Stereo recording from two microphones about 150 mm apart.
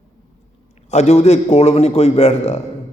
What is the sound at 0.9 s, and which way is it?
A man's voice, 50° left (ahead or behind).